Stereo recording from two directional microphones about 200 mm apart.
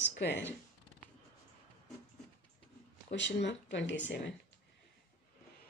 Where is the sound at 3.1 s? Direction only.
65° left (ahead or behind).